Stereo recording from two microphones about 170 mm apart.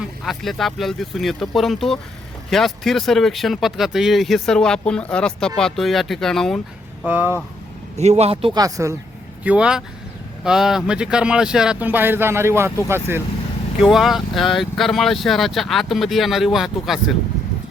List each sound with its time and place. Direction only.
0.0 s speech: centre (ahead or behind)
7.0 s speech: 10° right (ahead or behind)
7.9 s a man's voice: 40° right (ahead or behind)
8.6 s speech: 20° right (ahead or behind)
9.4 s speech: 5° right (ahead or behind)
13.8 s speech: centre (ahead or behind)